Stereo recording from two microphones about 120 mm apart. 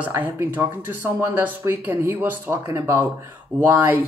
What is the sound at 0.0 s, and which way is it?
Speech, 15° right (ahead or behind).